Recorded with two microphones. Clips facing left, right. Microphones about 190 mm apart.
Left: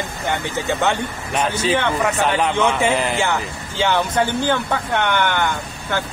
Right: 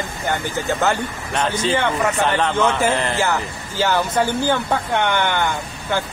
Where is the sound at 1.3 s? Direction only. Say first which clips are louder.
Left 1 dB; 10° left (ahead or behind).